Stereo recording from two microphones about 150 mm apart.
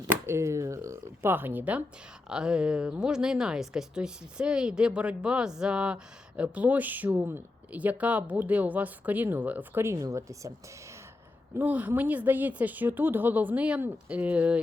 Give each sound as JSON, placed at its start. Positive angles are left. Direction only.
{"t": 0.1, "sound": "speech", "side_deg": -20}
{"t": 11.5, "sound": "speech", "side_deg": -10}